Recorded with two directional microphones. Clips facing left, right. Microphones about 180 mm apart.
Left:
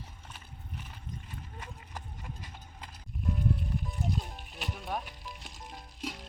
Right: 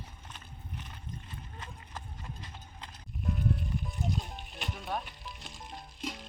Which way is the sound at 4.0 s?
Centre (ahead or behind).